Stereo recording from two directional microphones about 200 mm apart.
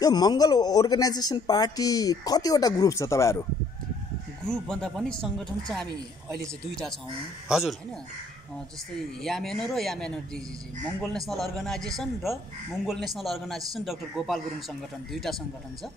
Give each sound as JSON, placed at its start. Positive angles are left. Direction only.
{"t": 0.0, "sound": "speech", "side_deg": 20}
{"t": 4.5, "sound": "a man's voice", "side_deg": 5}
{"t": 9.2, "sound": "a man's voice", "side_deg": 0}